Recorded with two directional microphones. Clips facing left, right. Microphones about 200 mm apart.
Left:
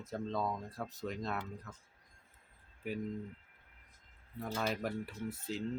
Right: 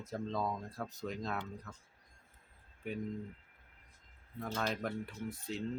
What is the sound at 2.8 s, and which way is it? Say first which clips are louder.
Speech: left 1 dB; 5° left (ahead or behind).